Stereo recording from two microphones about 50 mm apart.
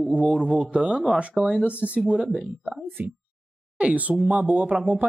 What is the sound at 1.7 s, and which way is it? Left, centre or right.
Speech, right.